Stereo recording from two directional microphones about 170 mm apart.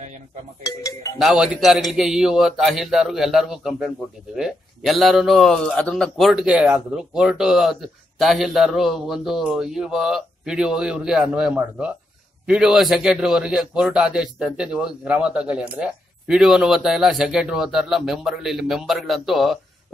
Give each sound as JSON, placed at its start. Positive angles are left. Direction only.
{"t": 0.7, "sound": "speech", "side_deg": 20}
{"t": 1.1, "sound": "a man's voice", "side_deg": 0}